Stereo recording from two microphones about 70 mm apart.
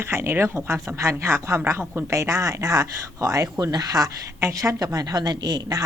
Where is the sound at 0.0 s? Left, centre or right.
Right.